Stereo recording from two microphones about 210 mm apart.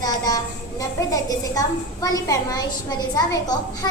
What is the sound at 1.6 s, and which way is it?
A child's voice, 15° left (ahead or behind).